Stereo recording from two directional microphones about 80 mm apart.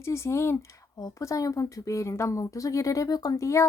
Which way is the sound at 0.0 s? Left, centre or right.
Left.